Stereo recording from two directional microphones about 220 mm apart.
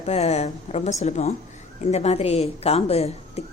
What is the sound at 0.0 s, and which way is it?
A woman's voice, 30° left (ahead or behind).